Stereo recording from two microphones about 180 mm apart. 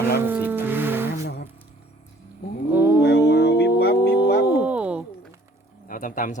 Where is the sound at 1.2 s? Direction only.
60° left (ahead or behind).